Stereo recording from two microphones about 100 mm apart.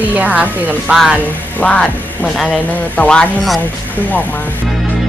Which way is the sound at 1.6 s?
10° left (ahead or behind).